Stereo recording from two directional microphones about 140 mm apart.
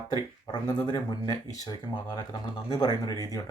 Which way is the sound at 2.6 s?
30° left (ahead or behind).